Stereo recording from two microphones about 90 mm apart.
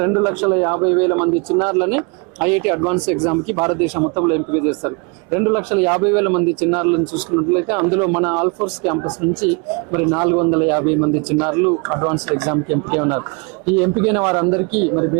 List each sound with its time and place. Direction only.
0.0 s speech: 20° right (ahead or behind)
9.9 s speech: 20° right (ahead or behind)
14.9 s speech: 25° right (ahead or behind)